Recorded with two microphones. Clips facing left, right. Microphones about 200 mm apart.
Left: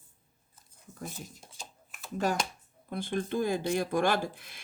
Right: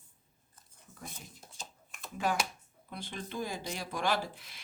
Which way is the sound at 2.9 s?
50° left (ahead or behind).